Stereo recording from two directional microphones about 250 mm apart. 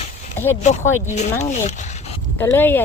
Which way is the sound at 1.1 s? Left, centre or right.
Left.